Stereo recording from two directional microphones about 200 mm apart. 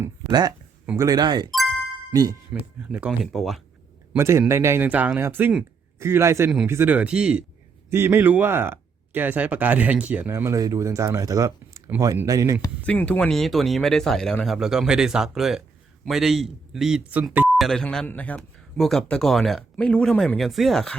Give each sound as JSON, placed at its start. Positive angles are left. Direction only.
{"t": 0.0, "sound": "speech", "side_deg": -20}
{"t": 1.5, "sound": "ding-dong", "side_deg": 0}
{"t": 2.1, "sound": "speech", "side_deg": -20}
{"t": 2.5, "sound": "speech", "side_deg": -5}
{"t": 4.1, "sound": "speech", "side_deg": -15}
{"t": 12.8, "sound": "speech", "side_deg": 5}